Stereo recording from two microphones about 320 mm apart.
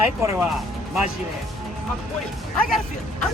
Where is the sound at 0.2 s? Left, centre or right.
Centre.